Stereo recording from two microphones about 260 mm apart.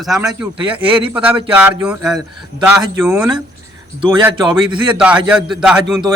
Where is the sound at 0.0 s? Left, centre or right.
Centre.